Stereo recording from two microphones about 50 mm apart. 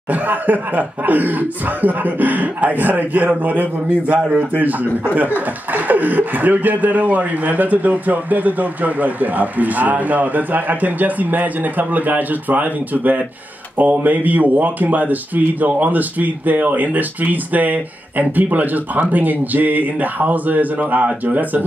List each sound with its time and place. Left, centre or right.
0.1 s speech: right